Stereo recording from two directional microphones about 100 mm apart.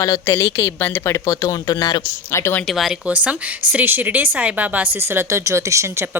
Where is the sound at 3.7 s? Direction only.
20° right (ahead or behind).